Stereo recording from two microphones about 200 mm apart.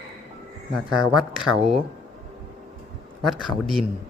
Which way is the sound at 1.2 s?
Centre (ahead or behind).